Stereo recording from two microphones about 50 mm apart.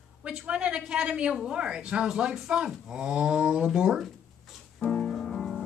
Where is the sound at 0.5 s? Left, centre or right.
Right.